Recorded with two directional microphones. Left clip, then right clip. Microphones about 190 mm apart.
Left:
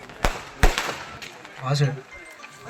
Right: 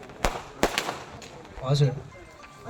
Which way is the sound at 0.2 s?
10° right (ahead or behind).